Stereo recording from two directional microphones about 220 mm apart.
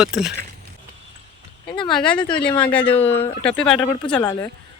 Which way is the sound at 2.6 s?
5° left (ahead or behind).